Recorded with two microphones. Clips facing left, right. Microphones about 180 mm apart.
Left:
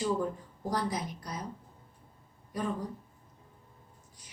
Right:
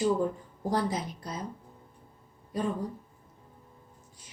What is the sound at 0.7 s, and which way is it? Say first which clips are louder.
Speech: right 3 dB; 25° right (ahead or behind).